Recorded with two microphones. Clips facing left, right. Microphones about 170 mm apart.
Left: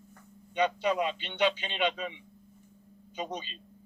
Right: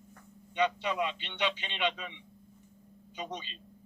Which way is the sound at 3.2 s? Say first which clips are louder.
Left 3 dB; 40° left (ahead or behind).